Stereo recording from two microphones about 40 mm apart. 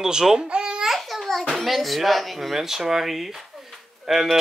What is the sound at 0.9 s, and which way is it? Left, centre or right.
Babbling, centre.